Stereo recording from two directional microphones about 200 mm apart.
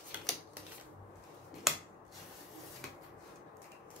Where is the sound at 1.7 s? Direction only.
Centre (ahead or behind).